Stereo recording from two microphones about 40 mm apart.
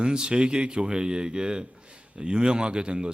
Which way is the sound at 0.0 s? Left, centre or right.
Right.